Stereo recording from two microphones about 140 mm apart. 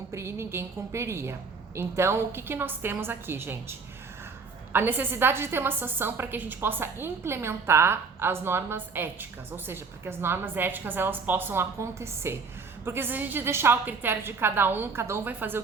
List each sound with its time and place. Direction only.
0.1 s a woman's voice: 20° right (ahead or behind)